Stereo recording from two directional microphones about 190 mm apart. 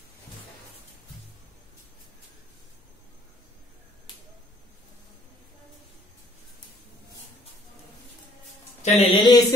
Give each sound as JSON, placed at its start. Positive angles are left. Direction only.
{"t": 8.8, "sound": "speech", "side_deg": 30}